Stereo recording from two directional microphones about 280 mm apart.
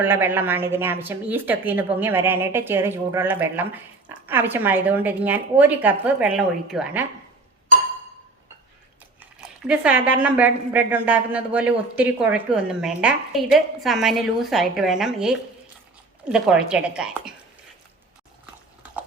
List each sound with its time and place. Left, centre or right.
0.0 s a woman's voice: centre
9.6 s a man's voice: centre